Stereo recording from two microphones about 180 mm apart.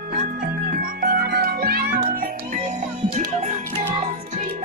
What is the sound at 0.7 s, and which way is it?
Music, 55° right (ahead or behind).